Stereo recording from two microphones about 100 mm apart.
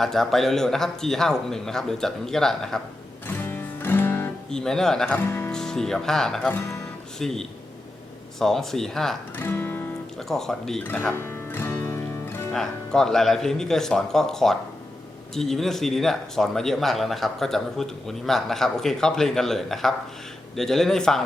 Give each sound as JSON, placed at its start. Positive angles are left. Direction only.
{"t": 0.0, "sound": "speech", "side_deg": 5}
{"t": 3.2, "sound": "music", "side_deg": 20}
{"t": 4.5, "sound": "speech", "side_deg": 5}
{"t": 6.5, "sound": "speech", "side_deg": 25}
{"t": 7.2, "sound": "speech", "side_deg": 5}
{"t": 9.4, "sound": "music", "side_deg": 20}
{"t": 10.2, "sound": "speech", "side_deg": 5}
{"t": 11.1, "sound": "music", "side_deg": 25}
{"t": 12.5, "sound": "speech", "side_deg": 5}